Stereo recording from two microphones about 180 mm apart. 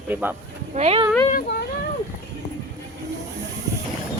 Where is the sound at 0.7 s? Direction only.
35° right (ahead or behind).